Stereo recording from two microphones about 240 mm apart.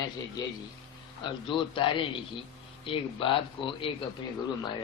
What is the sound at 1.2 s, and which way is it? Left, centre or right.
A man's voice, left.